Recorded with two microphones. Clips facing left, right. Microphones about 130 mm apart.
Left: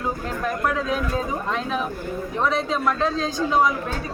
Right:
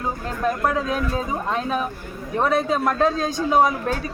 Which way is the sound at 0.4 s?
35° right (ahead or behind).